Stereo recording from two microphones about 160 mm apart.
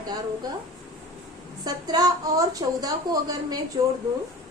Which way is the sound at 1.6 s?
25° right (ahead or behind).